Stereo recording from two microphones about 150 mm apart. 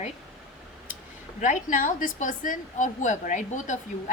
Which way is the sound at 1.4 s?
60° left (ahead or behind).